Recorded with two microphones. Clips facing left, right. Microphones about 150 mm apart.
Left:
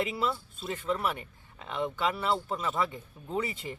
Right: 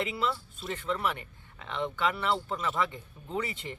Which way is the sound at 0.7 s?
10° left (ahead or behind).